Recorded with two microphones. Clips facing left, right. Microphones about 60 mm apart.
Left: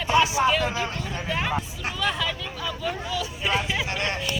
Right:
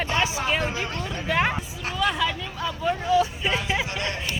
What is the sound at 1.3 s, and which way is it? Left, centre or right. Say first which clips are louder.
Speech: right 6 dB; right.